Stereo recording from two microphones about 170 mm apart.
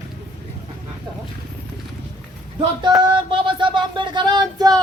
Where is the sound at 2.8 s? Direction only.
25° right (ahead or behind).